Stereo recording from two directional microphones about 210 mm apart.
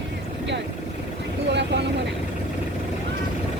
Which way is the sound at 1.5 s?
55° right (ahead or behind).